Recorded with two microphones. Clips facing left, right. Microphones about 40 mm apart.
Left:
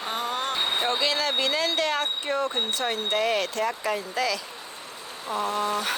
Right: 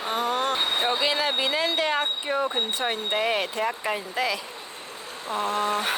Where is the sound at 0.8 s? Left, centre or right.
Centre; by 5.9 s right.